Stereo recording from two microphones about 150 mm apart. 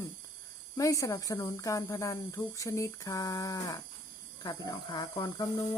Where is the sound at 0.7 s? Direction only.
20° left (ahead or behind).